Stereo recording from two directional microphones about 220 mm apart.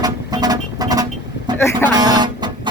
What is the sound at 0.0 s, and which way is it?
Vehicle, 15° right (ahead or behind).